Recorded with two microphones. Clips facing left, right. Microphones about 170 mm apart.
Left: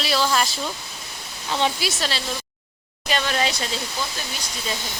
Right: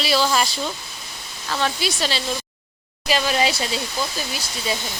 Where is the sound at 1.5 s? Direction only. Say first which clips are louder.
Left 1 dB; 20° left (ahead or behind).